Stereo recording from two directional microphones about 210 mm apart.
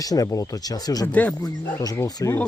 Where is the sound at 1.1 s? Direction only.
5° left (ahead or behind).